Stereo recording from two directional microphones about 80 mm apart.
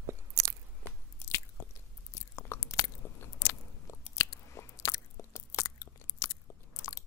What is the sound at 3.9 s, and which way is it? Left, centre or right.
Biting, left.